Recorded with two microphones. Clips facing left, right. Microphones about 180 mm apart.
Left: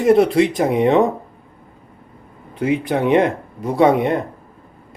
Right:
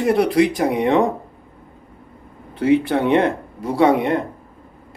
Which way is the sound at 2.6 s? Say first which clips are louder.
Right 2 dB; 15° left (ahead or behind).